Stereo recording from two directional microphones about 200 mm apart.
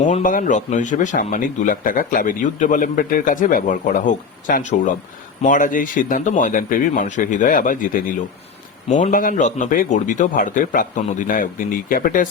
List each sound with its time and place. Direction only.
0.0 s speech: 40° left (ahead or behind)